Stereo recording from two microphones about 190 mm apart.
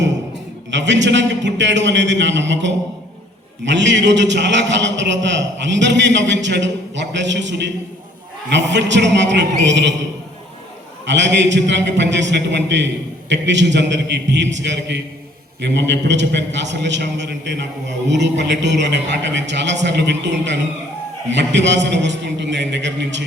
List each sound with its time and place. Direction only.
0.7 s a man's voice: 70° right (ahead or behind)
11.0 s a man's voice: 70° right (ahead or behind)